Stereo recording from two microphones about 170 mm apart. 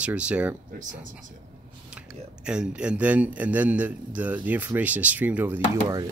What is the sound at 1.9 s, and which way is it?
Speech, 5° right (ahead or behind).